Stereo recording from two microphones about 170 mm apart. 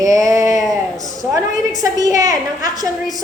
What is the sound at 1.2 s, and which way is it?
A woman's voice, 20° right (ahead or behind).